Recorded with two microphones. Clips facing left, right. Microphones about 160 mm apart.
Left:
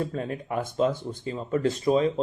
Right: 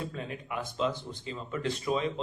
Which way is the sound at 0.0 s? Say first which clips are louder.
Left 8 dB; 45° left (ahead or behind).